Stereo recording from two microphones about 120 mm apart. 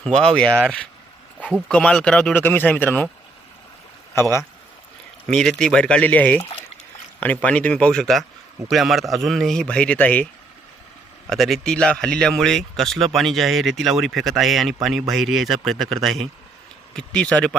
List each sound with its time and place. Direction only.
0.0 s speech: 5° left (ahead or behind)
4.1 s speech: 20° left (ahead or behind)
5.2 s speech: 5° left (ahead or behind)
11.3 s speech: centre (ahead or behind)